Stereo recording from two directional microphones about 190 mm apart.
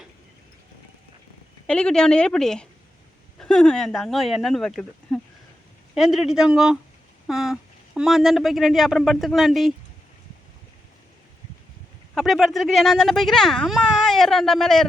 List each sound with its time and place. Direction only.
1.6 s speech: 5° left (ahead or behind)
12.1 s speech: centre (ahead or behind)